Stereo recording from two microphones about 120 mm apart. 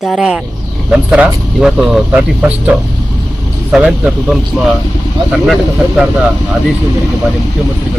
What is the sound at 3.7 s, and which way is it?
Speech, 10° right (ahead or behind).